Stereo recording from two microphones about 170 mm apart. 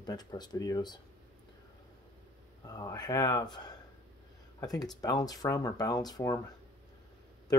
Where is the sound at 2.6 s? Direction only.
20° left (ahead or behind).